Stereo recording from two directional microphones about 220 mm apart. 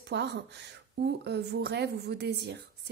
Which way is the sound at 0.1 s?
50° right (ahead or behind).